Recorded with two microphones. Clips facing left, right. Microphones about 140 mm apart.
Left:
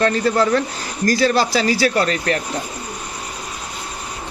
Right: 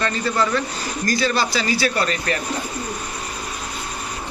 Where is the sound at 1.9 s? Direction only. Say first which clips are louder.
Left 4 dB; 65° left (ahead or behind).